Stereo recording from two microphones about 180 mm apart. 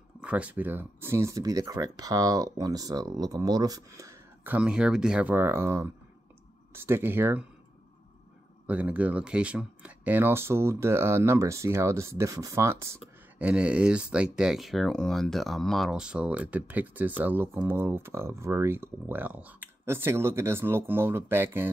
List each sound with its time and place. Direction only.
0.2 s speech: 5° right (ahead or behind)
4.6 s speech: 5° right (ahead or behind)
8.6 s speech: 10° right (ahead or behind)